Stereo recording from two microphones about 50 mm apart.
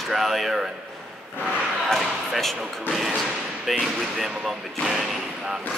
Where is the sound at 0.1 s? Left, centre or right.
Centre.